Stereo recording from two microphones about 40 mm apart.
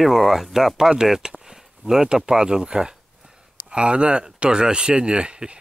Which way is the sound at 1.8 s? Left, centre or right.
Right.